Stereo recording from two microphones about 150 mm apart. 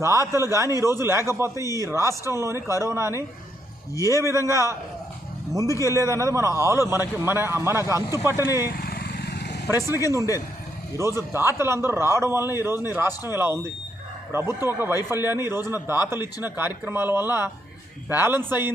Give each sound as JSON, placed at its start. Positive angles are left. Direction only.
{"t": 0.0, "sound": "a man's voice", "side_deg": -20}
{"t": 3.9, "sound": "speech", "side_deg": 20}
{"t": 4.2, "sound": "a man's voice", "side_deg": -20}
{"t": 5.8, "sound": "a man's voice", "side_deg": -20}
{"t": 8.7, "sound": "vehicle", "side_deg": 90}
{"t": 9.7, "sound": "speech", "side_deg": 25}
{"t": 10.0, "sound": "a man's voice", "side_deg": -20}